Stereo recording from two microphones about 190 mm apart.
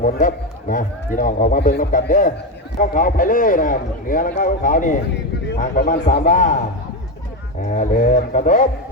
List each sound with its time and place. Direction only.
0.0 s a man's voice: 45° left (ahead or behind)
7.6 s speech: 40° left (ahead or behind)